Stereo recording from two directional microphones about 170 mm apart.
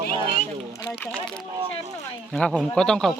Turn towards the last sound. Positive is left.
turn(degrees=5)  # may be behind; listen again after turning